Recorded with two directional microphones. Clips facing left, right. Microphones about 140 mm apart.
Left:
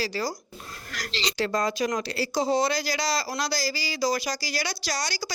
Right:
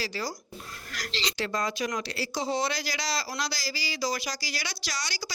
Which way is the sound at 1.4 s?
40° left (ahead or behind).